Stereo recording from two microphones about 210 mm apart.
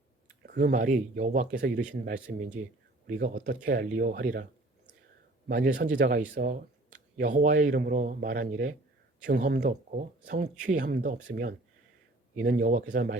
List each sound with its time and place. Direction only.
0.4 s speech: 45° right (ahead or behind)
5.5 s speech: 45° right (ahead or behind)